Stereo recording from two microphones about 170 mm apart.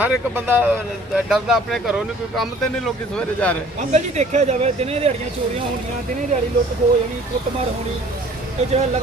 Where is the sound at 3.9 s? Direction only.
40° right (ahead or behind).